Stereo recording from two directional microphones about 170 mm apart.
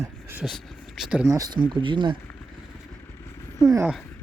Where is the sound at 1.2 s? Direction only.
20° right (ahead or behind).